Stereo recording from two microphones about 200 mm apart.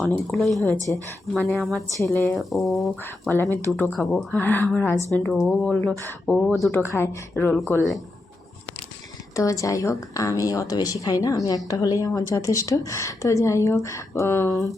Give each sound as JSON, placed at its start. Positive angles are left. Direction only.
{"t": 0.3, "sound": "speech", "side_deg": 0}
{"t": 3.3, "sound": "a woman's voice", "side_deg": 10}
{"t": 9.3, "sound": "a woman's voice", "side_deg": 15}